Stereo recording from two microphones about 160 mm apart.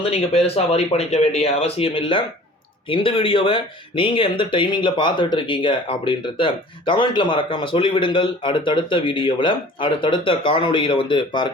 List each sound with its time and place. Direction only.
0.0 s speech: 40° left (ahead or behind)